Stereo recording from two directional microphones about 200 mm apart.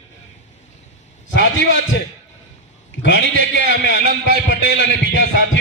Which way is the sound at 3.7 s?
60° left (ahead or behind).